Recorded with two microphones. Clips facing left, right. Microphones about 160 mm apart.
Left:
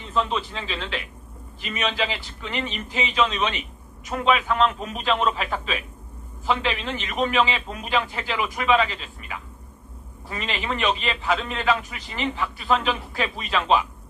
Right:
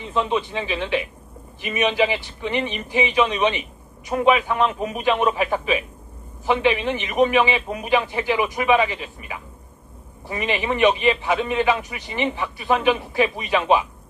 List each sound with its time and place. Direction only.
0.2 s a man's voice: 15° right (ahead or behind)